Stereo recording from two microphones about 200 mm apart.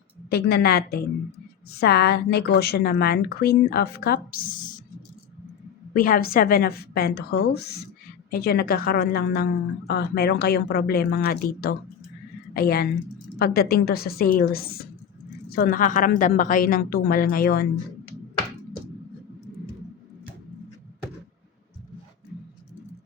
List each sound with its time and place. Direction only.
0.3 s a woman's voice: 50° left (ahead or behind)
5.9 s a woman's voice: 45° left (ahead or behind)